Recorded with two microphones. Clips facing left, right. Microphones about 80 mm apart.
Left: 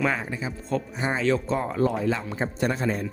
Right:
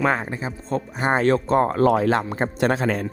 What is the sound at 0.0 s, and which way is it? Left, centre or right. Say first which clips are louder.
Speech: right 4 dB; right.